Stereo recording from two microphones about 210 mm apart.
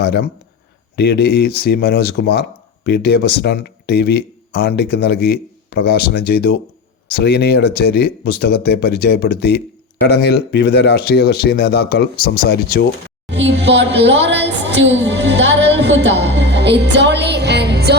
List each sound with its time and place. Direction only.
0.0 s speech: 50° left (ahead or behind)
13.3 s speech: 55° right (ahead or behind)